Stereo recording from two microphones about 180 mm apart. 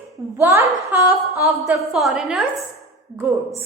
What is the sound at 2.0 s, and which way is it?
Speech, centre (ahead or behind).